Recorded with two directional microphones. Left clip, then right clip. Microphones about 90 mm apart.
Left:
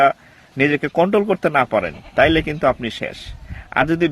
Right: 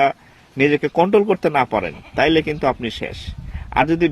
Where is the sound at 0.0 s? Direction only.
30° left (ahead or behind).